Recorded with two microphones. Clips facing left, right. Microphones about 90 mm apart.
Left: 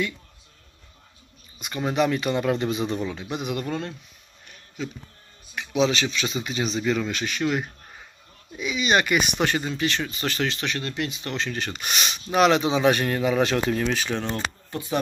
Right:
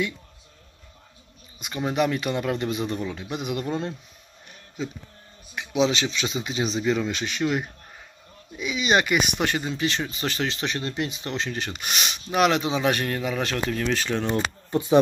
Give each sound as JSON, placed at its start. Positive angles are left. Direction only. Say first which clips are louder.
{"t": 1.6, "sound": "speech", "louder": "left 1 dB", "side_deg": -5}
{"t": 5.5, "sound": "speech", "louder": "even", "side_deg": -10}
{"t": 14.7, "sound": "speech", "louder": "right 10 dB", "side_deg": -25}